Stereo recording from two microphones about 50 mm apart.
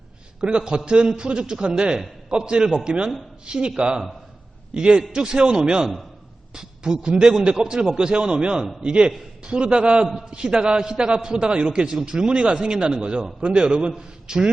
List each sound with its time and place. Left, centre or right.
0.4 s a man's voice: centre
10.1 s a man's voice: centre